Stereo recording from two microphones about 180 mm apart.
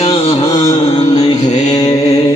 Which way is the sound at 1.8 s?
35° left (ahead or behind).